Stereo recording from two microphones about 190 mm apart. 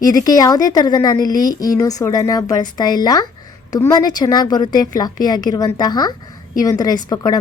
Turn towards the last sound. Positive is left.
turn(degrees=20)  # may be behind; listen again after turning